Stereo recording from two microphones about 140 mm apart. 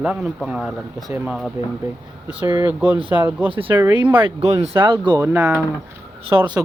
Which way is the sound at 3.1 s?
10° right (ahead or behind).